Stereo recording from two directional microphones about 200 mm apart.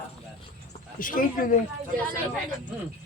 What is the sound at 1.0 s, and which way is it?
Speech, 45° left (ahead or behind).